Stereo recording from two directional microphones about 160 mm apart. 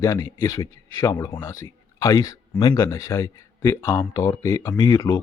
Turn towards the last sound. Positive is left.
turn(degrees=20)  # may be behind; listen again after turning